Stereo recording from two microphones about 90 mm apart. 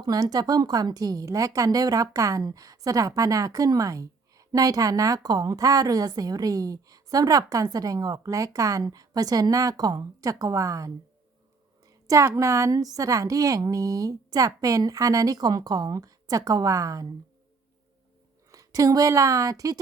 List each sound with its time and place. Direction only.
0.0 s a woman's voice: 45° right (ahead or behind)
11.9 s a sound: 35° right (ahead or behind)
12.3 s a woman's voice: 35° right (ahead or behind)
18.5 s a woman's voice: 40° right (ahead or behind)